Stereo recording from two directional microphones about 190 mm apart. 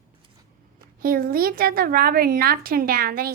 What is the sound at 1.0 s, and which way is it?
A woman's voice, 50° right (ahead or behind).